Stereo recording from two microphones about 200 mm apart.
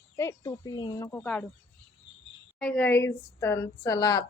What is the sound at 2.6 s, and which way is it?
A woman's voice, 5° left (ahead or behind).